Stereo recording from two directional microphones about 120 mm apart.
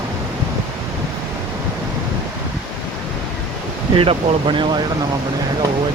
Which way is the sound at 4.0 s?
45° right (ahead or behind).